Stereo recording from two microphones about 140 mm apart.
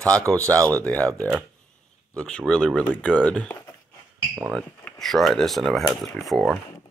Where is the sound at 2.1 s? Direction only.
5° left (ahead or behind).